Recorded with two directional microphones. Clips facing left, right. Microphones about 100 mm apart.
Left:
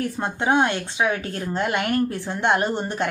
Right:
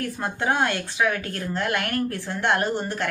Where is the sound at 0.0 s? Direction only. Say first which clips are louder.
Left 2 dB; 20° left (ahead or behind).